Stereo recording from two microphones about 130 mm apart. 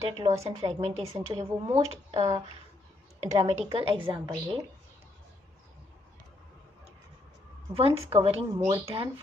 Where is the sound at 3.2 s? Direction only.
55° right (ahead or behind).